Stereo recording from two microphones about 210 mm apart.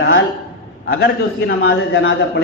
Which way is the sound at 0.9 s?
55° left (ahead or behind).